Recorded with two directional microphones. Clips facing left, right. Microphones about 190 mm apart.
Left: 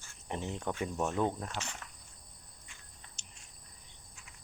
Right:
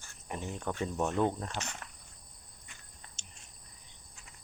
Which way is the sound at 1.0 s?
Centre (ahead or behind).